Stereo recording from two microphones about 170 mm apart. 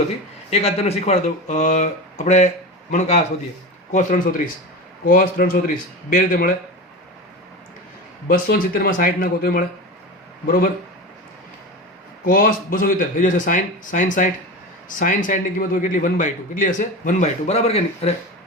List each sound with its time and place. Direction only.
0.5 s a man's voice: 35° left (ahead or behind); by 6.5 s 55° left (ahead or behind)
8.3 s speech: 60° left (ahead or behind)
12.2 s a man's voice: 55° left (ahead or behind); by 18.1 s 35° left (ahead or behind)